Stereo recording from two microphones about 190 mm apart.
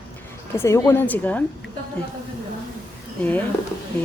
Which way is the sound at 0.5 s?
15° left (ahead or behind).